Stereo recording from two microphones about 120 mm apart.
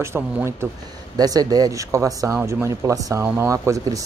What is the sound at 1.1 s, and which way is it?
Speech, 30° right (ahead or behind).